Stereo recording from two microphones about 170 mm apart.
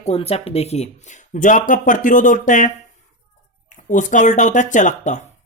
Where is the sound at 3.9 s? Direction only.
50° left (ahead or behind).